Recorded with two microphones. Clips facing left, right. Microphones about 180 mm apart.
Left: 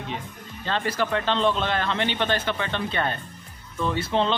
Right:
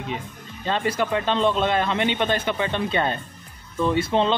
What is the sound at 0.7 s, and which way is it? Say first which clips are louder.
Speech: right 2 dB; 15° right (ahead or behind).